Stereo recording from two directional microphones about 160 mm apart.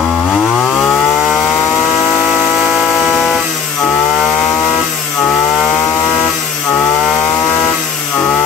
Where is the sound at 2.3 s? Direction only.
Centre (ahead or behind).